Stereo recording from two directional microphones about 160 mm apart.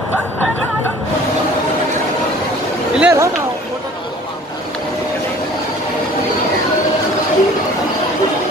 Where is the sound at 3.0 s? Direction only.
15° right (ahead or behind).